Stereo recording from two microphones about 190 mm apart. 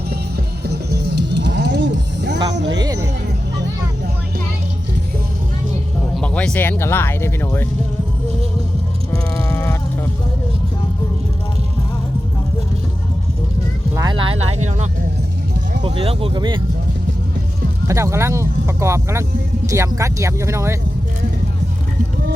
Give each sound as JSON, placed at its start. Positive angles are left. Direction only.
{"t": 0.6, "sound": "music", "side_deg": -60}
{"t": 2.8, "sound": "music", "side_deg": -20}
{"t": 6.1, "sound": "speech", "side_deg": 5}
{"t": 9.1, "sound": "music", "side_deg": 15}
{"t": 13.9, "sound": "a sound", "side_deg": -20}
{"t": 15.8, "sound": "speech", "side_deg": -30}
{"t": 17.8, "sound": "speech", "side_deg": -15}